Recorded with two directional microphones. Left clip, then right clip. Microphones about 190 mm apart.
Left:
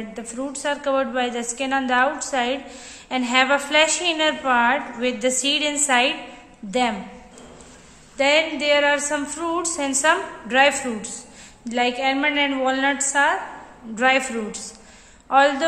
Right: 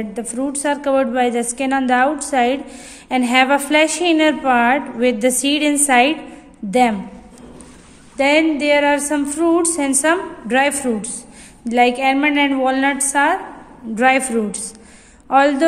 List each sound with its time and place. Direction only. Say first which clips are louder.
0.1 s a woman's voice: right 5 dB; 45° right (ahead or behind)
8.2 s a woman's voice: right 4 dB; 45° right (ahead or behind)